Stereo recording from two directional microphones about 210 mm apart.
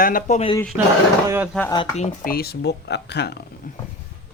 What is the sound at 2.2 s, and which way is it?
Speech, 45° left (ahead or behind).